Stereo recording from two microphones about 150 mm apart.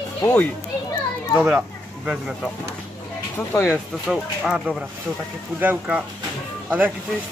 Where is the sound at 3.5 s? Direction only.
15° left (ahead or behind).